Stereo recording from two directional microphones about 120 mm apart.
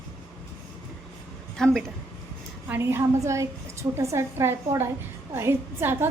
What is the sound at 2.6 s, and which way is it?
A woman's voice, 20° right (ahead or behind).